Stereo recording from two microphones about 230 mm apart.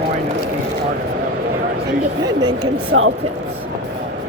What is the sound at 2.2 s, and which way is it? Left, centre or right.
Speech, centre.